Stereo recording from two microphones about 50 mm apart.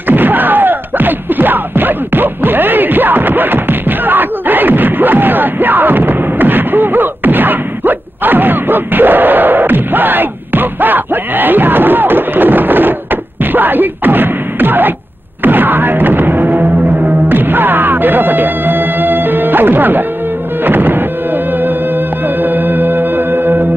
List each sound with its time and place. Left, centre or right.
0.1 s a sound: right
15.4 s music: right
22.4 s music: right